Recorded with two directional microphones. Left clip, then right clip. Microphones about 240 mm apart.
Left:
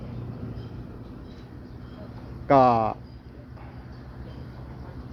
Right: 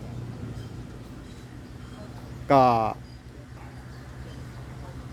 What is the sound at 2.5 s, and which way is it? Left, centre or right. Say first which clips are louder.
Speech: left 1 dB; centre.